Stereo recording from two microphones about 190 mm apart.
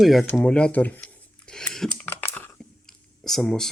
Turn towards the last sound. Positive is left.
turn(degrees=0)  # may be behind; listen again after turning